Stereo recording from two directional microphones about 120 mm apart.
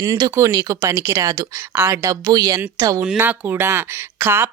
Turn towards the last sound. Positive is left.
turn(degrees=-20)  # may be behind; listen again after turning